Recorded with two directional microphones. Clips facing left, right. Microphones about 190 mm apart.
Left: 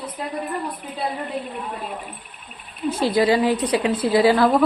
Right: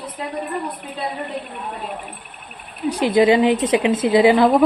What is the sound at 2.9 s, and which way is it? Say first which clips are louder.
A woman's voice: right 4 dB; 20° right (ahead or behind).